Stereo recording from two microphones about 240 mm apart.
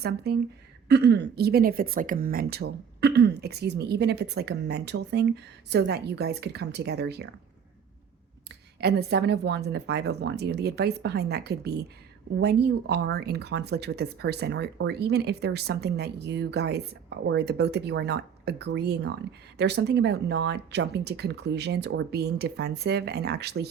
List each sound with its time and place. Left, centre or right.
0.0 s speech: right
8.4 s speech: right